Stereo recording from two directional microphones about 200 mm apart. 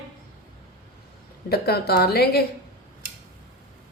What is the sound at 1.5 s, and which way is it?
Speech, 50° left (ahead or behind).